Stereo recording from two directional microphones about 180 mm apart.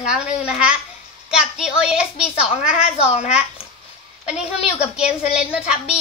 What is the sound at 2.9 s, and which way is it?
Speech, 30° left (ahead or behind).